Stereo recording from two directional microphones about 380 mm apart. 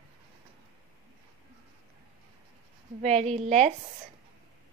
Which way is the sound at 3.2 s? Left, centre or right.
Centre.